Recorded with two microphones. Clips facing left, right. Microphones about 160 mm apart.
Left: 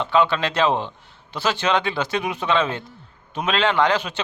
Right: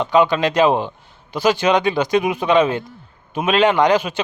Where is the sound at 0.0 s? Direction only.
15° right (ahead or behind).